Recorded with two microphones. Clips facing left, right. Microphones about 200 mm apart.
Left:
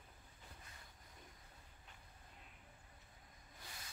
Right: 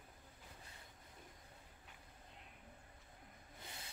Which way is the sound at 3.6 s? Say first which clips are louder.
Right 2 dB; 25° right (ahead or behind).